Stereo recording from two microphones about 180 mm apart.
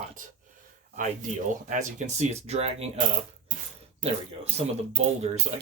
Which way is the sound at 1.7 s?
45° right (ahead or behind).